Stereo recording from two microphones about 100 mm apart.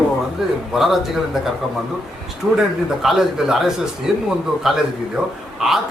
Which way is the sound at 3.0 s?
5° right (ahead or behind).